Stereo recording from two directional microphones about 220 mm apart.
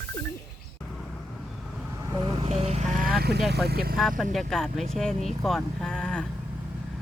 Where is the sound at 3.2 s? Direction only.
45° right (ahead or behind).